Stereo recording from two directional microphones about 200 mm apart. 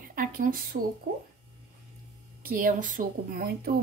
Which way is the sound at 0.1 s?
45° right (ahead or behind).